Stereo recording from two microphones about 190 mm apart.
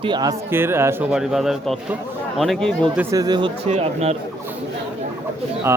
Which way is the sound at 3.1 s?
20° right (ahead or behind).